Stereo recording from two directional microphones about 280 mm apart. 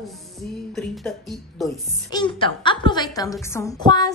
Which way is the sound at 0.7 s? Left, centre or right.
Centre.